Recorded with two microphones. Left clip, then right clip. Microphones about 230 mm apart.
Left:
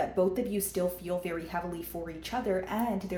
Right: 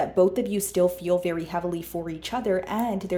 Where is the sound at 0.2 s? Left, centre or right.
Right.